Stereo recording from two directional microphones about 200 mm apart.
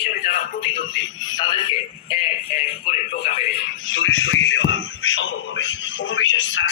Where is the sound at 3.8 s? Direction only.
75° left (ahead or behind).